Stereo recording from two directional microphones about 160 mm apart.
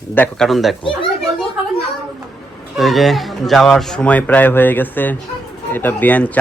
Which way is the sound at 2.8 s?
Centre (ahead or behind).